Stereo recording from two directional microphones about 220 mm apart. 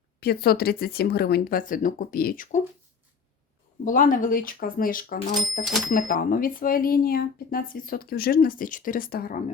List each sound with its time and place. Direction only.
0.2 s speech: 45° left (ahead or behind)
3.8 s speech: 40° left (ahead or behind)